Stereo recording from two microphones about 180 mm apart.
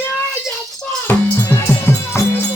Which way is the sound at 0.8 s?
10° left (ahead or behind).